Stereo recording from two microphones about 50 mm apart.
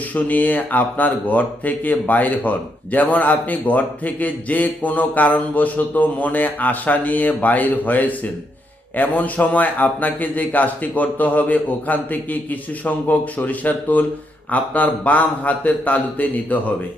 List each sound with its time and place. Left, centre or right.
0.1 s speech: left